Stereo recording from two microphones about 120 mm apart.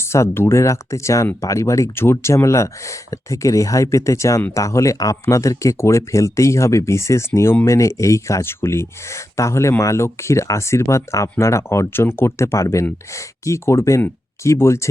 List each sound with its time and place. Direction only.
0.0 s speech: 20° left (ahead or behind)